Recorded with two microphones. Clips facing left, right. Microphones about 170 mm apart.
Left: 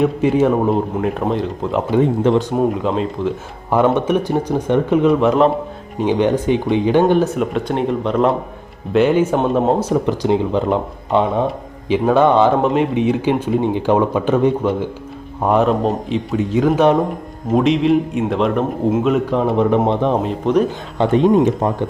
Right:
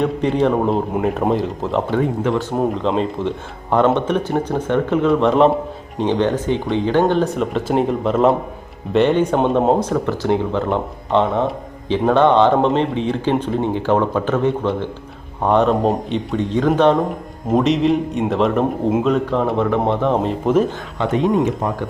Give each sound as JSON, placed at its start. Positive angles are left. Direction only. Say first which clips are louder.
{"t": 0.0, "sound": "a man's voice", "louder": "left 2 dB", "side_deg": 5}
{"t": 1.9, "sound": "speech", "louder": "left 7 dB", "side_deg": 20}
{"t": 2.6, "sound": "speech", "louder": "left 1 dB", "side_deg": 5}
{"t": 5.2, "sound": "a man's voice", "louder": "even", "side_deg": 0}
{"t": 6.0, "sound": "a man's voice", "louder": "left 2 dB", "side_deg": 10}
{"t": 9.8, "sound": "a man's voice", "louder": "left 2 dB", "side_deg": 15}
{"t": 19.9, "sound": "speech", "louder": "left 1 dB", "side_deg": 20}
{"t": 20.2, "sound": "a man's voice", "louder": "even", "side_deg": 0}
{"t": 21.0, "sound": "speech", "louder": "left 5 dB", "side_deg": 35}